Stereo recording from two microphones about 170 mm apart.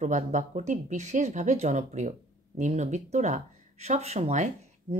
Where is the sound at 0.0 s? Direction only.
45° right (ahead or behind).